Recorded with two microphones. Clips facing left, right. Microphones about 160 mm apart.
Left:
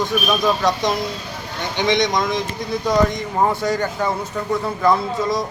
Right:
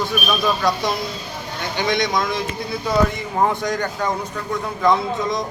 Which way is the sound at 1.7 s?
5° right (ahead or behind).